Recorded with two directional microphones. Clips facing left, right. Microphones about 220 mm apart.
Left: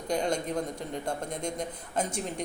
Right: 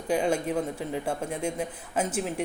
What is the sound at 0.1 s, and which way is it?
Speech, 5° right (ahead or behind).